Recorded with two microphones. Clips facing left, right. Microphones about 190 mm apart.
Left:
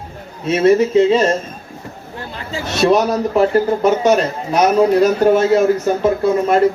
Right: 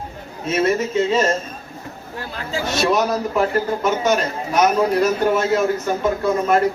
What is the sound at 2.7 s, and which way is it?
A man's voice, 35° left (ahead or behind).